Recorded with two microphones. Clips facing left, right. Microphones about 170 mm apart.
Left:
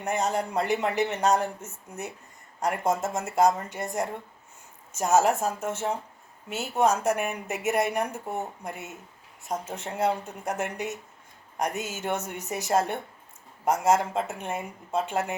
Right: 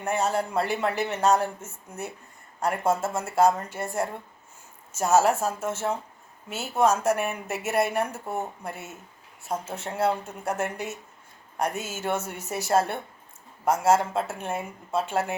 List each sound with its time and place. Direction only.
0.0 s a woman's voice: 15° left (ahead or behind)